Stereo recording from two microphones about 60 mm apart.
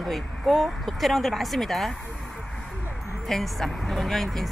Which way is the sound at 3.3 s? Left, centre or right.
Centre.